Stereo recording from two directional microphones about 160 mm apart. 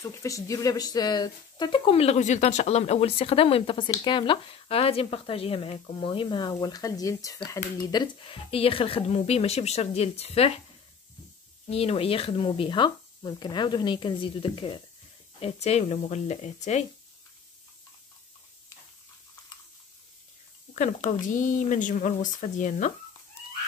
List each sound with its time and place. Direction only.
0.0 s speech: 20° left (ahead or behind); by 10.6 s 40° left (ahead or behind)
11.7 s speech: 40° left (ahead or behind)
20.7 s speech: 50° left (ahead or behind)